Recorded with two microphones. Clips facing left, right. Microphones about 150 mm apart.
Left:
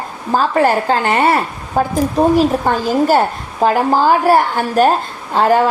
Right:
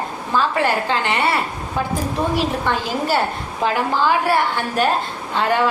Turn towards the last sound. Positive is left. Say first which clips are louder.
# left 6 dB
turn(degrees=40)  # may be behind; listen again after turning